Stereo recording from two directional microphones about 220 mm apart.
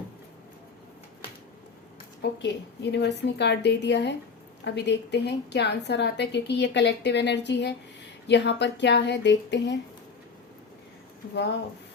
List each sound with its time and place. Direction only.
2.4 s a woman's voice: 50° left (ahead or behind)